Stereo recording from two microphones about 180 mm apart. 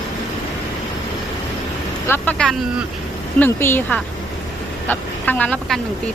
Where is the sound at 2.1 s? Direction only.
5° left (ahead or behind).